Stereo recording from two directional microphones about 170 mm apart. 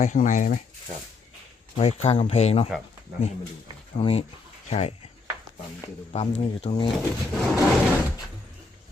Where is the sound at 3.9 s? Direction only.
35° left (ahead or behind).